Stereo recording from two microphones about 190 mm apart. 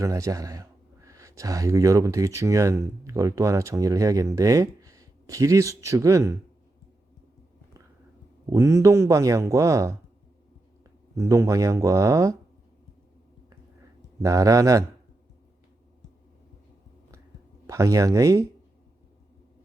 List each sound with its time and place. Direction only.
0.0 s speech: 15° right (ahead or behind)
8.4 s speech: 15° right (ahead or behind)
11.2 s speech: 15° right (ahead or behind)
14.2 s speech: 15° right (ahead or behind)
17.7 s speech: 15° right (ahead or behind)